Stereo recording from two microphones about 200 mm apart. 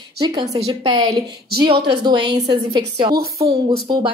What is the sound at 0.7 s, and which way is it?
A woman's voice, 25° right (ahead or behind).